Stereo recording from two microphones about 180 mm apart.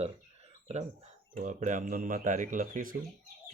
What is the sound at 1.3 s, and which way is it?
Speech, 45° right (ahead or behind).